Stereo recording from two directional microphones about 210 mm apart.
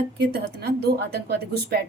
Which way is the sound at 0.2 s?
50° right (ahead or behind).